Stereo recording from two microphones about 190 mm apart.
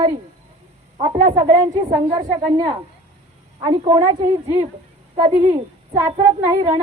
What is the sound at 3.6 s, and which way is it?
Speech, 25° right (ahead or behind).